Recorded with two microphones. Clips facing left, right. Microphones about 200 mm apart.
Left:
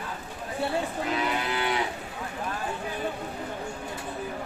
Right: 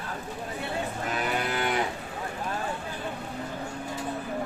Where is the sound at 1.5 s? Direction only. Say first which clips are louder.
Even; 50° right (ahead or behind).